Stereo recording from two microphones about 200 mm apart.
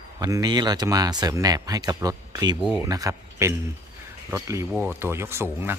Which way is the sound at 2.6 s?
Centre (ahead or behind).